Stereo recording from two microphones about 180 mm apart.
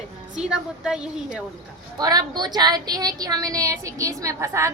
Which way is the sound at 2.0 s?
20° right (ahead or behind).